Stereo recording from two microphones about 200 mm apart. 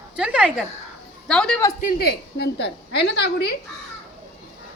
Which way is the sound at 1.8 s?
50° left (ahead or behind).